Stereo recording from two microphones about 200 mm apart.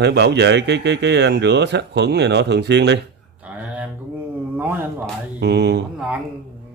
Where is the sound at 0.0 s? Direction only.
55° right (ahead or behind).